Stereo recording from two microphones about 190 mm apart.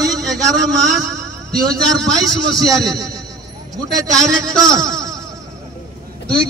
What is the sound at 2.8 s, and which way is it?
Speech, 20° right (ahead or behind).